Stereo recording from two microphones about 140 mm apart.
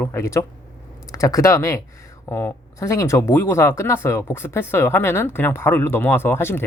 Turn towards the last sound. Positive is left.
turn(degrees=15)  # may be behind; listen again after turning